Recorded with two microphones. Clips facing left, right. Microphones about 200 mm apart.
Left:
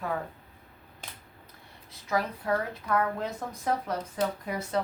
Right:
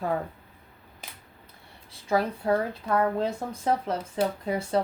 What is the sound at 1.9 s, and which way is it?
A woman's voice, 30° right (ahead or behind).